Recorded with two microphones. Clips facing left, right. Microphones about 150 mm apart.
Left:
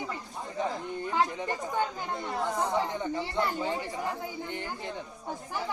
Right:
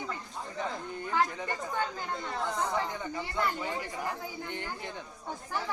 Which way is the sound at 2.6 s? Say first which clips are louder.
Left 4 dB; 25° left (ahead or behind).